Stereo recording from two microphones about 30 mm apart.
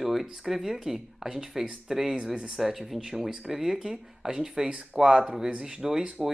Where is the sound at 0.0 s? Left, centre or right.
Centre.